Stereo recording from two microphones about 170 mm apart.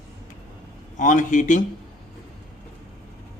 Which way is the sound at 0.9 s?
50° left (ahead or behind).